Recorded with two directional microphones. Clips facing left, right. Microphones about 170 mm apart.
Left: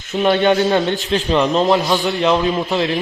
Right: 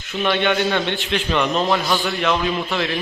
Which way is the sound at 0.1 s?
40° left (ahead or behind).